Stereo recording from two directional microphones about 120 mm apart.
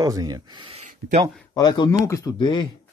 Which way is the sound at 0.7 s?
55° right (ahead or behind).